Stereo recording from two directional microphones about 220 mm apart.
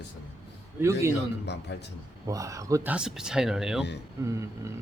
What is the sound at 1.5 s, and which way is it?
Speech, 50° left (ahead or behind).